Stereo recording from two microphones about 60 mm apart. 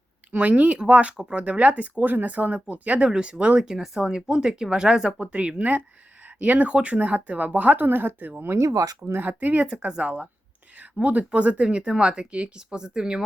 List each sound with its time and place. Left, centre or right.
0.3 s speech: right
3.6 s speech: centre; by 8.3 s right
8.5 s speech: right
9.2 s speech: right
9.6 s speech: centre